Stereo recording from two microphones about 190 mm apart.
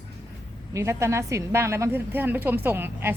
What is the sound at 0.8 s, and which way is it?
A woman's voice, 15° right (ahead or behind).